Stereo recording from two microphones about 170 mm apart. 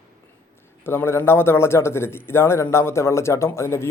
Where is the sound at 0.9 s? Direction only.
15° left (ahead or behind).